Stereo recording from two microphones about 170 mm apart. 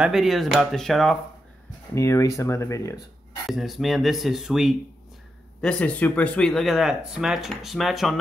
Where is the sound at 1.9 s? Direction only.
15° left (ahead or behind).